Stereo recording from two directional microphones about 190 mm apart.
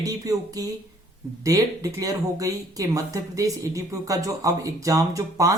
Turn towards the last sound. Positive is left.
turn(degrees=-15)  # may be behind; listen again after turning